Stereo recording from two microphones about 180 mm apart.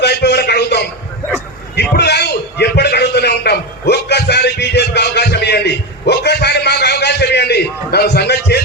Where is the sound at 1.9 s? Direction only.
65° left (ahead or behind).